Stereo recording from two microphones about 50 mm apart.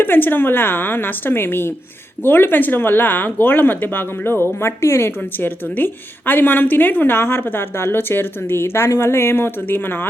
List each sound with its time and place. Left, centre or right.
0.0 s speech: left
5.7 s a woman's voice: left